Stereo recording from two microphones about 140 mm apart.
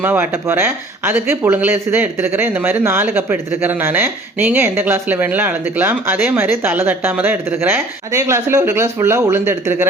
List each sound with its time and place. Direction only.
0.0 s speech: 15° right (ahead or behind)